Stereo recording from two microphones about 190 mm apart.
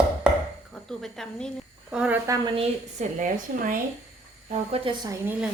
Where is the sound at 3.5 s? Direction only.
45° right (ahead or behind).